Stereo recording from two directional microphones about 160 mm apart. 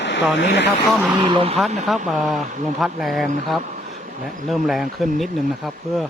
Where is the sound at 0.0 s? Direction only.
90° left.